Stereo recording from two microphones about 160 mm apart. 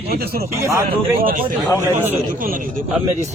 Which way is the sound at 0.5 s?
20° right (ahead or behind).